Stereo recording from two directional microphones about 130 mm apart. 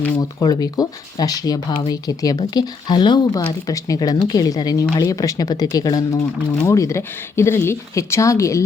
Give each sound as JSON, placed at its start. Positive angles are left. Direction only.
{"t": 0.2, "sound": "speech", "side_deg": 30}